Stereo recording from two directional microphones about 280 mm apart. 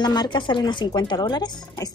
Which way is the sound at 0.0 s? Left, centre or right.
Centre.